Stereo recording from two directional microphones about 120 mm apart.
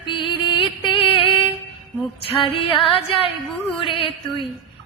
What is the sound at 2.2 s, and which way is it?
Music, 50° left (ahead or behind).